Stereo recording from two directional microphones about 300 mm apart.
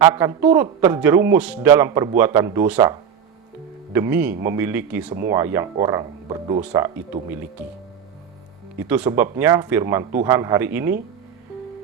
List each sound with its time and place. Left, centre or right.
0.0 s speech: centre
3.9 s speech: centre
5.0 s speech: right
5.3 s speech: centre
8.9 s speech: centre